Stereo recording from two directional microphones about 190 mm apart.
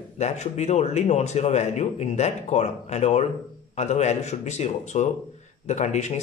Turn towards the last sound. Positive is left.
turn(degrees=35)  # may be behind; listen again after turning